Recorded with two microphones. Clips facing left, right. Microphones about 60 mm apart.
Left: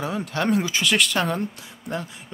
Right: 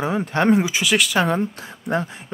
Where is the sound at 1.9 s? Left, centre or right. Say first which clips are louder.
Right 7 dB; right.